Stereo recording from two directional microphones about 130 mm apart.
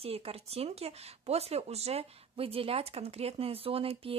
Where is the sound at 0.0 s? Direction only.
50° right (ahead or behind).